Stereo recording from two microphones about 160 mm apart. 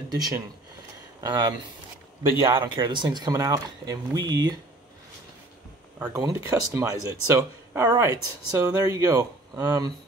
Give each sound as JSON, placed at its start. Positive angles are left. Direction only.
{"t": 0.1, "sound": "speech", "side_deg": -25}
{"t": 2.5, "sound": "speech", "side_deg": -30}
{"t": 5.9, "sound": "speech", "side_deg": -10}